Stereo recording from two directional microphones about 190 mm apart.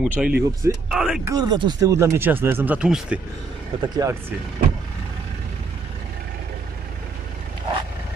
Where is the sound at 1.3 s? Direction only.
20° right (ahead or behind).